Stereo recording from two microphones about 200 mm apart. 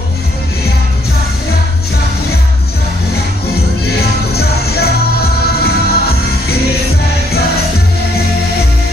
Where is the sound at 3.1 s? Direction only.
50° left (ahead or behind).